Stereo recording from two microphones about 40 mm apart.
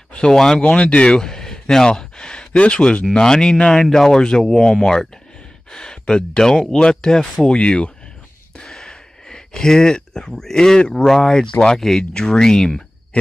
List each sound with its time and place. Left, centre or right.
0.3 s speech: centre
0.6 s speech: left
1.1 s speech: centre
2.5 s speech: left
8.6 s a sound: centre
10.8 s speech: centre